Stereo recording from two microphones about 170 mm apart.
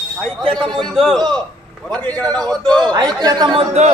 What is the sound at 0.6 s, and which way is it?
Speech, centre (ahead or behind).